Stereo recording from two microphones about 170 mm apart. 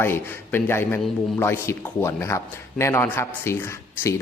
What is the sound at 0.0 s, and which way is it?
A man's voice, 15° left (ahead or behind).